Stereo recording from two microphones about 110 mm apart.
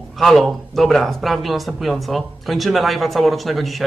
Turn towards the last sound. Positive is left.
turn(degrees=0)  # may be behind; listen again after turning